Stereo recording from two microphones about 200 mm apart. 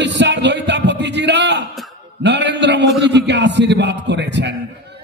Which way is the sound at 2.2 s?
60° right (ahead or behind).